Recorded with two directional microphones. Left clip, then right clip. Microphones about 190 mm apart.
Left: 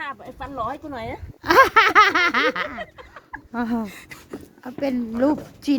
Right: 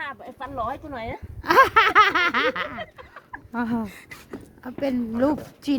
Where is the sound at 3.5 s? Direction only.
5° left (ahead or behind).